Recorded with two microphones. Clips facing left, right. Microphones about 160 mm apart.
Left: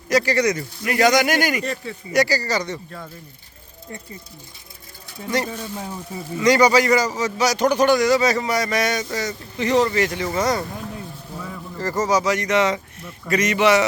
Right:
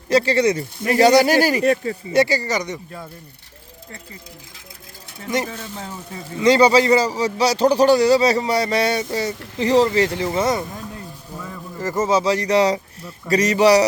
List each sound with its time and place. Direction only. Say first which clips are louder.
0.1 s a man's voice: right 2 dB; 30° right (ahead or behind)
1.6 s speech: right 10 dB; 55° right (ahead or behind)
2.1 s speech: right 1 dB; 25° right (ahead or behind)
5.5 s speech: left 2 dB; 10° left (ahead or behind)
6.4 s a man's voice: right 2 dB; 30° right (ahead or behind)
11.8 s a man's voice: right 1 dB; 25° right (ahead or behind)